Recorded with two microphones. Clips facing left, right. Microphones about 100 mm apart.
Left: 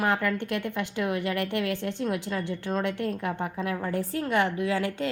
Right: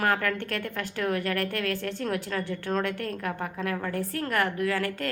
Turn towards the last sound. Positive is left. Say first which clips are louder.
# left 1 dB
turn(degrees=25)  # may be behind; listen again after turning